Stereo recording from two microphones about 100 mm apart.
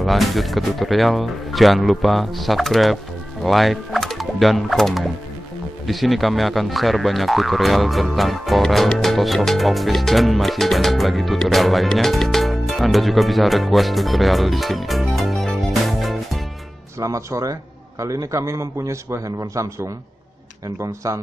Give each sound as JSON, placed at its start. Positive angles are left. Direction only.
{"t": 0.0, "sound": "speech", "side_deg": 0}
{"t": 17.0, "sound": "a man's voice", "side_deg": -35}